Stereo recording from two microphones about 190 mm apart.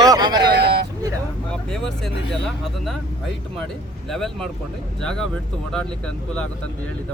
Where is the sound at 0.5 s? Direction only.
60° right (ahead or behind).